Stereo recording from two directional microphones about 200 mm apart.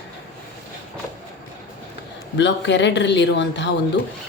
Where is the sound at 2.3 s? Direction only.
60° left (ahead or behind).